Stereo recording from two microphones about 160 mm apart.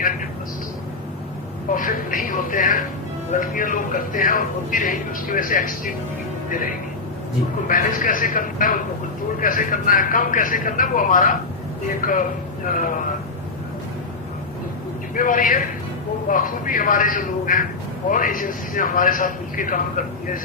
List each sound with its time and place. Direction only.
1.7 s a woman's voice: 60° left (ahead or behind)
15.1 s speech: 60° left (ahead or behind)